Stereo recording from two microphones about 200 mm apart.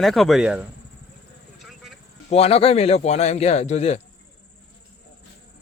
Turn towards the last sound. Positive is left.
turn(degrees=35)  # may be behind; listen again after turning